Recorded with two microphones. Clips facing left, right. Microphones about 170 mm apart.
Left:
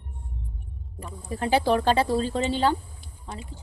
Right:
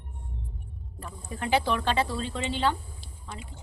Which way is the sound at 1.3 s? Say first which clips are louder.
Left 4 dB; 35° left (ahead or behind).